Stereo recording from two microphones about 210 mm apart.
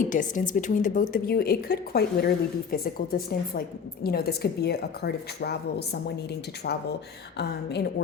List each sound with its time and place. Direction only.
0.1 s a woman's voice: 40° left (ahead or behind)